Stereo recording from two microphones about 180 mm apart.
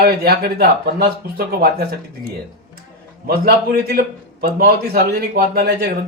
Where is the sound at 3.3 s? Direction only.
60° right (ahead or behind).